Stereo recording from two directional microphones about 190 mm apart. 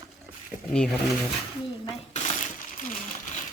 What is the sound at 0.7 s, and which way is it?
Speech, 5° left (ahead or behind).